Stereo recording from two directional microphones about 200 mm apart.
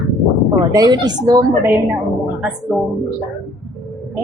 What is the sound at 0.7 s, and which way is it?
A woman's voice, 20° right (ahead or behind).